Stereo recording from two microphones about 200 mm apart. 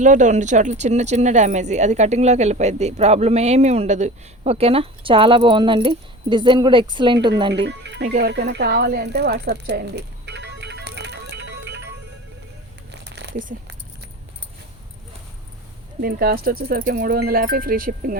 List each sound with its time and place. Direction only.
0.0 s speech: 40° right (ahead or behind); by 7.5 s 20° right (ahead or behind)
7.5 s speech: 60° right (ahead or behind)
8.2 s rattle: 55° right (ahead or behind)
12.9 s a sound: 60° right (ahead or behind)
16.0 s speech: 50° right (ahead or behind)